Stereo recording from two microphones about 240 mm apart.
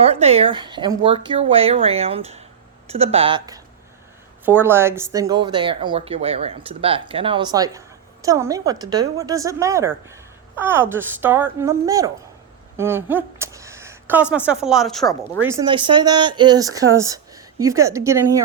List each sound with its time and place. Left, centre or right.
0.0 s speech: right; by 15.0 s centre
15.4 s speech: centre